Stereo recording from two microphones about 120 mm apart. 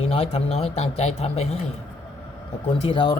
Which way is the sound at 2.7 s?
45° left (ahead or behind).